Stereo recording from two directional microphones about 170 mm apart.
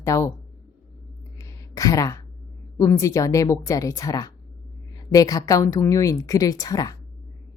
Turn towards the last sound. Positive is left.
turn(degrees=20)  # may be behind; listen again after turning